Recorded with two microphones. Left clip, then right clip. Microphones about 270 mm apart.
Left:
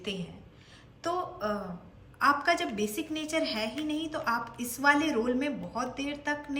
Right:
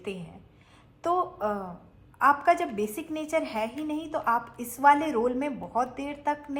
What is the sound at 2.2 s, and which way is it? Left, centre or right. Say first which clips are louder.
A woman's voice: right 4 dB; centre.